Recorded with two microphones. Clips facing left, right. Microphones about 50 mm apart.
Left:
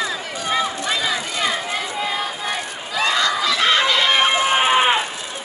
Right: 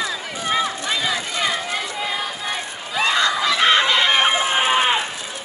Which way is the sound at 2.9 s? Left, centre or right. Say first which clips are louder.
Even; right.